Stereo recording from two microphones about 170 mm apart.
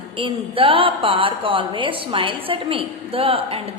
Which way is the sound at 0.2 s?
30° right (ahead or behind).